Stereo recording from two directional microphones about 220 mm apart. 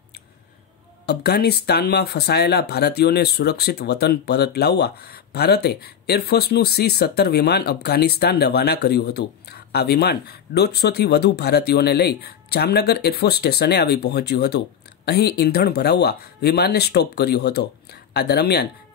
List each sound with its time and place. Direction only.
1.0 s speech: 45° left (ahead or behind)